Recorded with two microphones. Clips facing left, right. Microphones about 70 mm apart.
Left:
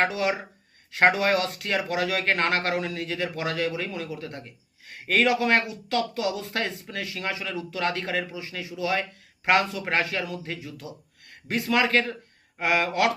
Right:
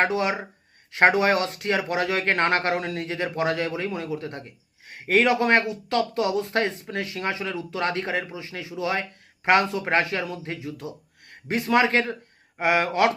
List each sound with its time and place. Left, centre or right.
0.0 s speech: right